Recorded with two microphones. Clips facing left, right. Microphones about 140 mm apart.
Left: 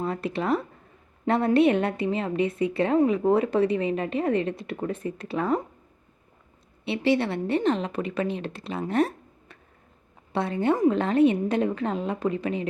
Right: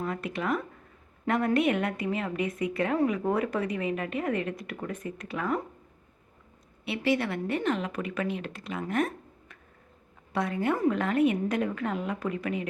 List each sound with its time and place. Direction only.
0.0 s speech: 30° left (ahead or behind)
6.8 s speech: 25° left (ahead or behind)